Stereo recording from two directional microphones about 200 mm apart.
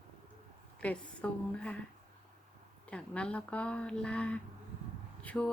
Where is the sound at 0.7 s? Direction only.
5° left (ahead or behind).